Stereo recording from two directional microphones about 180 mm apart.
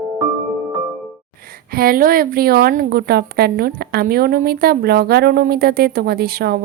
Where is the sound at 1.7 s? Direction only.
55° right (ahead or behind).